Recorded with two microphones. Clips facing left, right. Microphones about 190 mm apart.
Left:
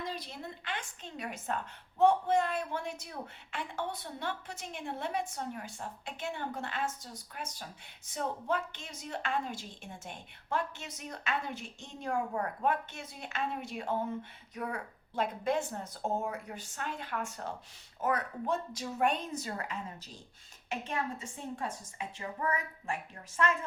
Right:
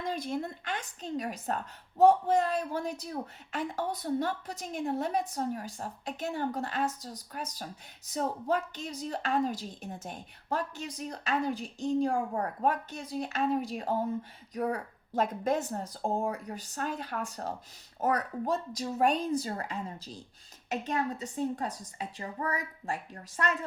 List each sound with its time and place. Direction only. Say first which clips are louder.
0.0 s speech: right 7 dB; 50° right (ahead or behind)